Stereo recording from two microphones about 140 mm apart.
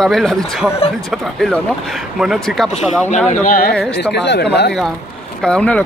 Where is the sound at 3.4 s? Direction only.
90° left.